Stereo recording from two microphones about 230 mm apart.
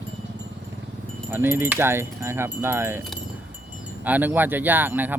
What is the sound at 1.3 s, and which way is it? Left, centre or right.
Speech, centre.